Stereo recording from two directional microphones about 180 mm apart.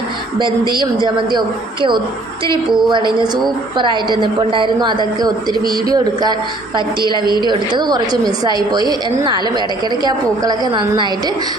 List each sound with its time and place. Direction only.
0.3 s a woman's voice: 25° right (ahead or behind)
7.4 s a woman's voice: 25° right (ahead or behind)